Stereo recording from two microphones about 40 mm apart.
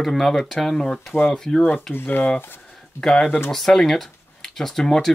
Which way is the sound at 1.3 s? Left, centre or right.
Centre.